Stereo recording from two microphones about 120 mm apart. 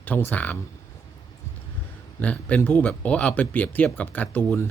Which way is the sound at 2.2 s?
10° left (ahead or behind).